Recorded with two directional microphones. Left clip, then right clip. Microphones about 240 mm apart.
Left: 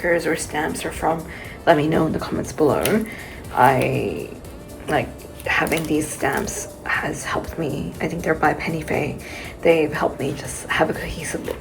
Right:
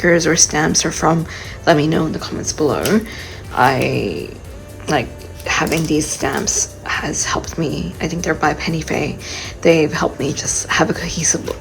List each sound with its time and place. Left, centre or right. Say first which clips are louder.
0.0 s speech: right 7 dB; centre
5.5 s speech: right 3 dB; centre